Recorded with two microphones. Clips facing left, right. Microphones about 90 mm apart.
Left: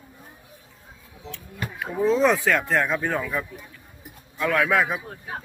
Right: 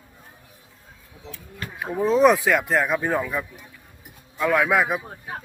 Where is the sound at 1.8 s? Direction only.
15° right (ahead or behind).